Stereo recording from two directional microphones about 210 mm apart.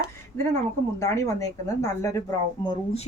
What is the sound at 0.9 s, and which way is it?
A woman's voice, 15° left (ahead or behind).